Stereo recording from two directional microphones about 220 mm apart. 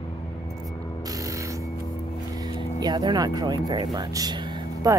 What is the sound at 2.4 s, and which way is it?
Vehicle, 20° right (ahead or behind).